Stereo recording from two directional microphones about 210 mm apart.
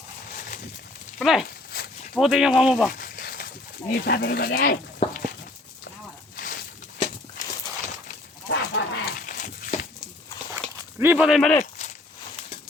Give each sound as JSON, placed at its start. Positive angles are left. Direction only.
{"t": 1.2, "sound": "speech", "side_deg": 0}
{"t": 1.7, "sound": "walk", "side_deg": 45}
{"t": 2.1, "sound": "speech", "side_deg": 0}
{"t": 2.9, "sound": "a sound", "side_deg": 45}
{"t": 3.9, "sound": "speech", "side_deg": 50}
{"t": 5.0, "sound": "a sound", "side_deg": 25}
{"t": 8.4, "sound": "a sound", "side_deg": 60}
{"t": 9.2, "sound": "dog", "side_deg": 40}
{"t": 10.5, "sound": "dog", "side_deg": -10}